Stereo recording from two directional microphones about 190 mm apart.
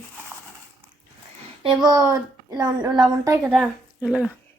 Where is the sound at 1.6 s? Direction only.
20° right (ahead or behind).